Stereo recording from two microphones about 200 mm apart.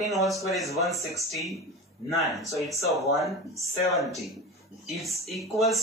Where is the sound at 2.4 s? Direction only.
15° right (ahead or behind).